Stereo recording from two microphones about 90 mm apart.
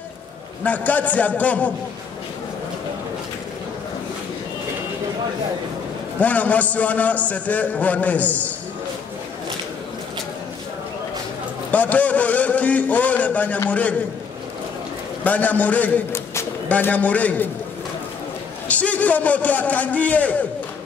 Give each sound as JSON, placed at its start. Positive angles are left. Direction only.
{"t": 0.7, "sound": "a man's voice", "side_deg": 15}
{"t": 6.1, "sound": "a man's voice", "side_deg": 15}
{"t": 11.7, "sound": "a man's voice", "side_deg": 15}
{"t": 15.2, "sound": "a man's voice", "side_deg": 15}
{"t": 18.7, "sound": "a man's voice", "side_deg": 15}